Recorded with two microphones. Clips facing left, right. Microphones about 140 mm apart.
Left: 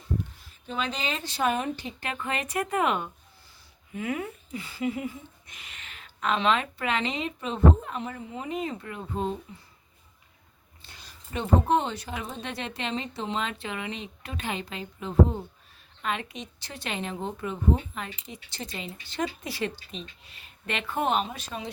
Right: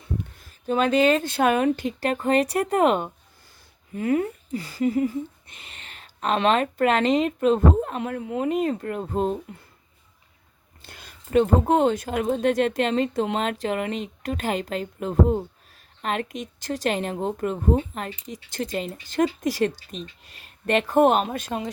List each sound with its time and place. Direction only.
0.7 s speech: 55° right (ahead or behind)
2.0 s speech: 40° right (ahead or behind)
6.3 s speech: 50° right (ahead or behind)
10.8 s speech: 55° right (ahead or behind)
13.6 s speech: 40° right (ahead or behind)